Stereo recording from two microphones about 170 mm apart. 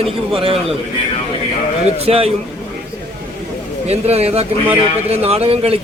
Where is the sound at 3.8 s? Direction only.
40° right (ahead or behind).